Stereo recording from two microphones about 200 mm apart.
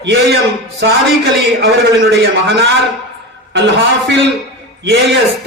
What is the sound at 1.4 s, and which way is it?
A man's voice, 55° right (ahead or behind).